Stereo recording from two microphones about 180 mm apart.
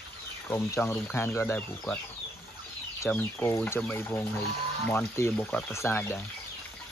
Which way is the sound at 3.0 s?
10° left (ahead or behind).